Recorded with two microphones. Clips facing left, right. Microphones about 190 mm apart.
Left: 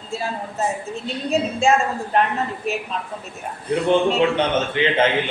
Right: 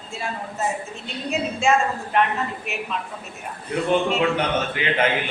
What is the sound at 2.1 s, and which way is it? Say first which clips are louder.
Speech: left 1 dB; 35° left (ahead or behind).